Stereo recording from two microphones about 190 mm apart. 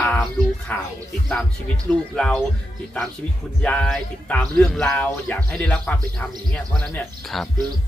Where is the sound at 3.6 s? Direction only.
5° left (ahead or behind).